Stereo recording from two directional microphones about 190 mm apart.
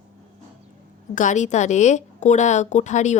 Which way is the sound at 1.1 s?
40° left (ahead or behind).